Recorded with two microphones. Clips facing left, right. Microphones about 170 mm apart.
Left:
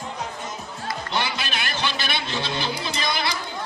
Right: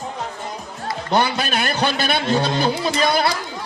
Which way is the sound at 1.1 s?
45° right (ahead or behind).